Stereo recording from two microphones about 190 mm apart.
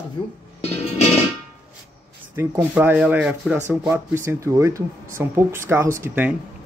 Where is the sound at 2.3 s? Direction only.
10° right (ahead or behind).